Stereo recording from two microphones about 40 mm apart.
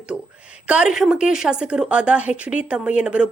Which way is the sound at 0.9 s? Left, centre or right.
Centre.